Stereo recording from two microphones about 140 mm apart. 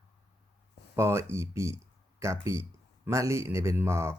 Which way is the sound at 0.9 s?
20° right (ahead or behind).